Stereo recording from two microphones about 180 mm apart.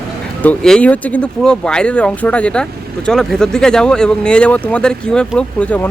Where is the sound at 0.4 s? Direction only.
5° left (ahead or behind).